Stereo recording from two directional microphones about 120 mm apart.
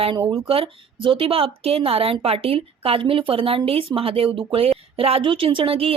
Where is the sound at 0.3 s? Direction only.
50° right (ahead or behind).